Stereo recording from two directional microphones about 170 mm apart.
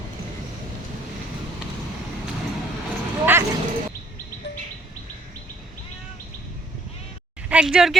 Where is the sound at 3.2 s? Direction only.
10° right (ahead or behind).